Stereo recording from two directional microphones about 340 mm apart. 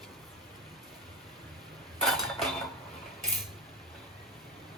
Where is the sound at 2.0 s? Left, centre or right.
Centre.